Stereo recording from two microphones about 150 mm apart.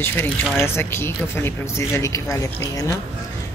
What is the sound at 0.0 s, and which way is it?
A man's voice, 15° left (ahead or behind).